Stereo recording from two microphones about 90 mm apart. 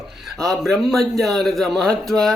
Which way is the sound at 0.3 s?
5° left (ahead or behind).